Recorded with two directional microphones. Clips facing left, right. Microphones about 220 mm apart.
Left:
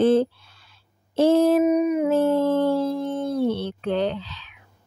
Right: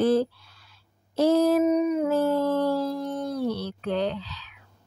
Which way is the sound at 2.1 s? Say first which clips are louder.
Left 4 dB; 25° left (ahead or behind).